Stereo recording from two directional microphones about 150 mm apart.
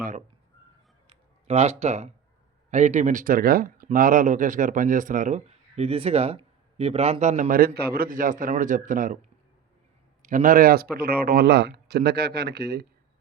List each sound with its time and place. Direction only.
1.1 s a sound: 45° right (ahead or behind)
2.6 s speech: 50° right (ahead or behind); by 3.8 s 85° right
3.9 s speech: 65° right (ahead or behind)
10.2 s speech: 60° right (ahead or behind); by 12.8 s 90° right